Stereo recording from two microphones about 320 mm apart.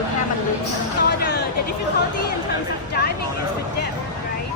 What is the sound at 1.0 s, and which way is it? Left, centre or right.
Speech, left.